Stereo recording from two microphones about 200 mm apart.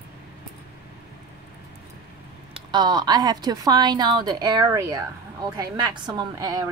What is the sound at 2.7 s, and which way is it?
A woman's voice, 20° right (ahead or behind).